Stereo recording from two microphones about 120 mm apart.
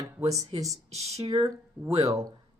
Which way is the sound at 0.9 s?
60° right (ahead or behind).